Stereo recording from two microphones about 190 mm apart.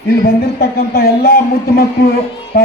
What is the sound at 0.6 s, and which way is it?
A man's voice, 55° left (ahead or behind).